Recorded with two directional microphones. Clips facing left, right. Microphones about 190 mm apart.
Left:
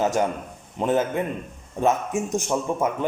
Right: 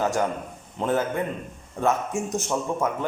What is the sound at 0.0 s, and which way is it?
A man's voice, 20° left (ahead or behind).